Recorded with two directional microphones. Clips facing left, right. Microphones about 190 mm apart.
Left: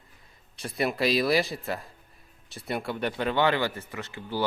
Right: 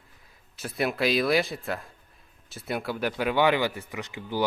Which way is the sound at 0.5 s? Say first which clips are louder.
Even; centre (ahead or behind).